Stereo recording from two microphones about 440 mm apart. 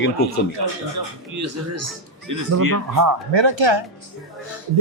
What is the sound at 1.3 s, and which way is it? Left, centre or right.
A man's voice, right.